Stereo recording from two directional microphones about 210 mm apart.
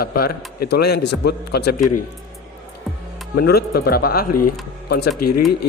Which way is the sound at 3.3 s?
50° left (ahead or behind).